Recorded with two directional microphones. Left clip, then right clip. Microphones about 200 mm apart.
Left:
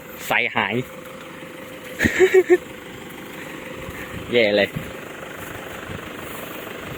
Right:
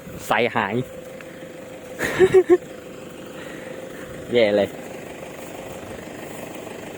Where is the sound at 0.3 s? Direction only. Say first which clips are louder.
Even; 15° right (ahead or behind).